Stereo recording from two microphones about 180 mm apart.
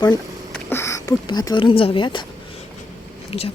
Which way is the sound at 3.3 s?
30° left (ahead or behind).